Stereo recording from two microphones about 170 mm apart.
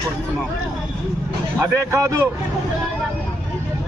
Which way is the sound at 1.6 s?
15° right (ahead or behind).